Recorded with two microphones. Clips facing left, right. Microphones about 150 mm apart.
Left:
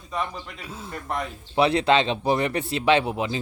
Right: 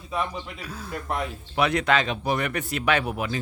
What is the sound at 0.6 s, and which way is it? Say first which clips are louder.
Speech: right 1 dB; 25° left (ahead or behind).